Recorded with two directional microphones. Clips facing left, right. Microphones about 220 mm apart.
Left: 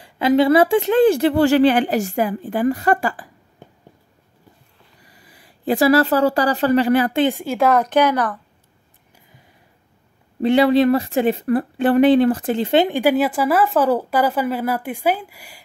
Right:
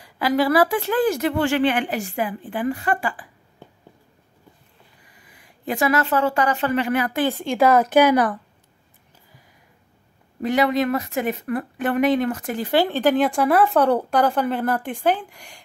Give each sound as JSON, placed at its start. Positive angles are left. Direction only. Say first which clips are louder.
{"t": 0.0, "sound": "a woman's voice", "louder": "left 5 dB", "side_deg": 25}
{"t": 5.0, "sound": "speech", "louder": "left 3 dB", "side_deg": 35}
{"t": 7.2, "sound": "speech", "louder": "left 3 dB", "side_deg": 10}
{"t": 7.5, "sound": "speech", "louder": "right 2 dB", "side_deg": 0}
{"t": 10.4, "sound": "speech", "louder": "left 6 dB", "side_deg": 30}